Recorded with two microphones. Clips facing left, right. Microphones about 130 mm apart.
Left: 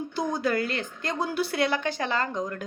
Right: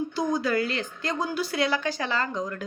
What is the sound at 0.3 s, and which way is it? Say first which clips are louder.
A woman's voice: left 1 dB; 50° left (ahead or behind).